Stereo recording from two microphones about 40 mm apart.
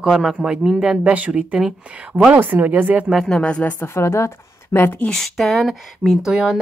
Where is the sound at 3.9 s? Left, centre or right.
Left.